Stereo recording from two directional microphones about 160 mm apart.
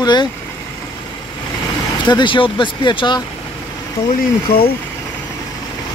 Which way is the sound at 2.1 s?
30° left (ahead or behind).